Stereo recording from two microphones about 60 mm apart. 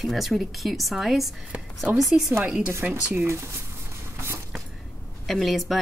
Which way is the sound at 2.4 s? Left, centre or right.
Right.